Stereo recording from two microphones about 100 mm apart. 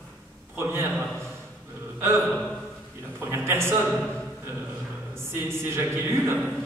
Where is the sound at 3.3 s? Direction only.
25° right (ahead or behind).